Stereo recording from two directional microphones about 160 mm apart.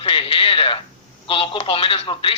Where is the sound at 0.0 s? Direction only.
35° left (ahead or behind).